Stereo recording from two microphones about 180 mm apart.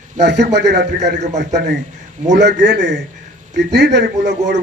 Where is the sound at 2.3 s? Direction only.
75° right (ahead or behind).